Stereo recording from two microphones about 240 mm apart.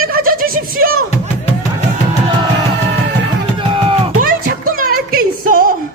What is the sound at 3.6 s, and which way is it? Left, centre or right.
Music, right.